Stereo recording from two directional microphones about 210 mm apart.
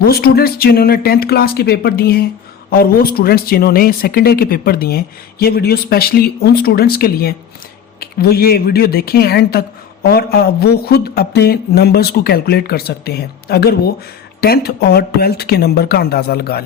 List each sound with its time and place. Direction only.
0.0 s speech: 45° left (ahead or behind)